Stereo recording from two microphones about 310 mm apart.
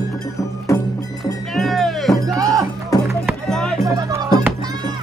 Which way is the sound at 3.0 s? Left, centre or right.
Centre.